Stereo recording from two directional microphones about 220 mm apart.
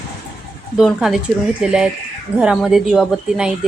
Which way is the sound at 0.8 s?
Centre (ahead or behind).